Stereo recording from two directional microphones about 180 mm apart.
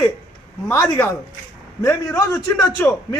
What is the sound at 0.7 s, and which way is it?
Speech, 15° left (ahead or behind).